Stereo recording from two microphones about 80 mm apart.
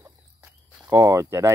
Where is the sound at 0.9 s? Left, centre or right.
Right.